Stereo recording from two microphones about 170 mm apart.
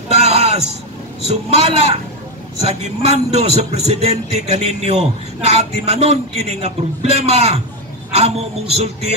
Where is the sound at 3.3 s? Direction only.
40° right (ahead or behind).